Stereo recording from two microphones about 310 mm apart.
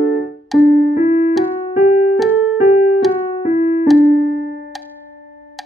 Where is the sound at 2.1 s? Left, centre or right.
Centre.